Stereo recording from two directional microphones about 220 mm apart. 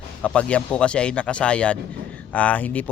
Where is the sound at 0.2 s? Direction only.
5° left (ahead or behind).